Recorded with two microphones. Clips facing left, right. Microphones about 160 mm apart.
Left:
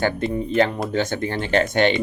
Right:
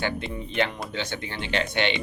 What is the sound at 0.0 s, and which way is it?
Speech, 40° left (ahead or behind).